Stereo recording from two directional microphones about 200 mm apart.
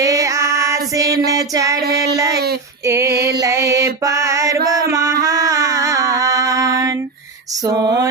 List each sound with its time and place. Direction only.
0.0 s female singing: 15° right (ahead or behind)
3.1 s female singing: 55° right (ahead or behind)
3.3 s music: 15° right (ahead or behind)
7.6 s a sound: 20° right (ahead or behind)